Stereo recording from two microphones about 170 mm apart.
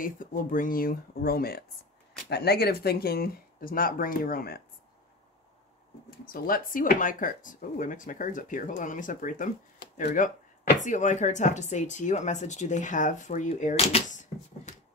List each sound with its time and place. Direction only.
0.0 s speech: 55° left (ahead or behind)
6.0 s speech: 60° left (ahead or behind); by 14.2 s 40° left (ahead or behind)